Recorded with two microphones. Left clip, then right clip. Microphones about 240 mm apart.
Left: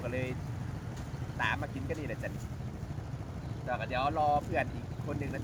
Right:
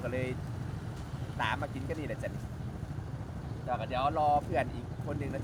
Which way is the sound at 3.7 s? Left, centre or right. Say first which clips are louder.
Right 1 dB; centre.